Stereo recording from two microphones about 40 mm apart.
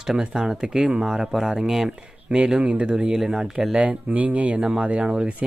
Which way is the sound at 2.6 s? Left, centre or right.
Right.